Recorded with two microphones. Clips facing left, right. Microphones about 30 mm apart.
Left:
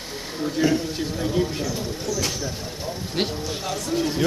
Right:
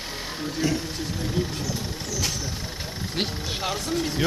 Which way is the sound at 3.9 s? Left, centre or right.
Centre.